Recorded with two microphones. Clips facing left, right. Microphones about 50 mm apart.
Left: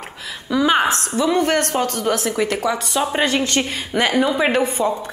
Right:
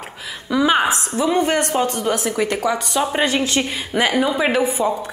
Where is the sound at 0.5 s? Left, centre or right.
Centre.